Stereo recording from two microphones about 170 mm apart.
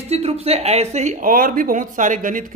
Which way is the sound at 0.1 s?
35° right (ahead or behind).